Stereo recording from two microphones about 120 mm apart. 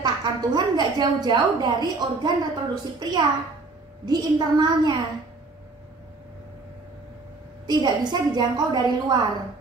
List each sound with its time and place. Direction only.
0.0 s a woman's voice: 35° right (ahead or behind)
7.6 s a woman's voice: 35° right (ahead or behind)